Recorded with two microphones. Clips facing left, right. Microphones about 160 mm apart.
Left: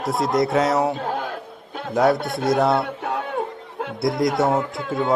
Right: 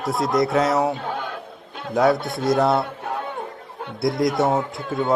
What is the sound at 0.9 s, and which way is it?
Speech, 40° left (ahead or behind).